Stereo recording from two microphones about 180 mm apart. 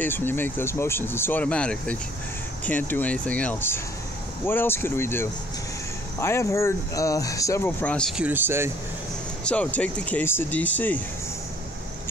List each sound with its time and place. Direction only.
0.0 s speech: 10° left (ahead or behind)
8.2 s speech: 10° right (ahead or behind)
9.4 s speech: 5° left (ahead or behind)